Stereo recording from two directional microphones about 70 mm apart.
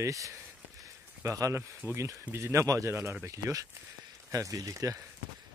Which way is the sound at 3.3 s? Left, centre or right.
Right.